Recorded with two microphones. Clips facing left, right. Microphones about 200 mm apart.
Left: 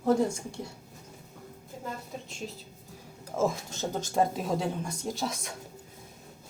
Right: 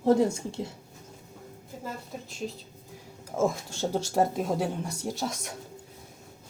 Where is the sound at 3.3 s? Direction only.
10° right (ahead or behind).